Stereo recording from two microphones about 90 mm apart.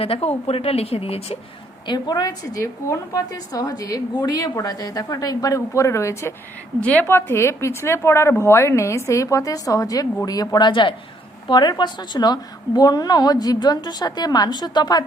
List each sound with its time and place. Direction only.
0.0 s a woman's voice: 90° left
1.9 s a woman's voice: 50° left (ahead or behind); by 6.3 s 35° left (ahead or behind)
6.8 s a woman's voice: 20° left (ahead or behind); by 15.0 s 50° left (ahead or behind)